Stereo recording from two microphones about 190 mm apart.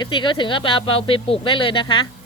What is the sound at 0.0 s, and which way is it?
Speech, 25° left (ahead or behind).